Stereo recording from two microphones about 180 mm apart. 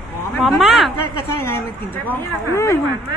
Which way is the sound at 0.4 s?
Centre (ahead or behind).